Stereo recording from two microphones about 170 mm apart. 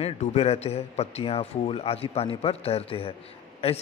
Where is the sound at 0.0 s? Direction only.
40° left (ahead or behind).